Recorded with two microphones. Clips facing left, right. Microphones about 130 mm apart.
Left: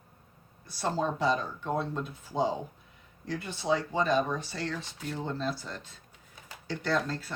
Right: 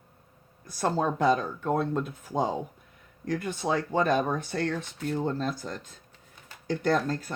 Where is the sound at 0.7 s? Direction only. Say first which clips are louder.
Right 3 dB; 50° right (ahead or behind).